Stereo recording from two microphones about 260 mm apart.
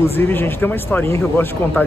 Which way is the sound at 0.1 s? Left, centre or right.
Centre.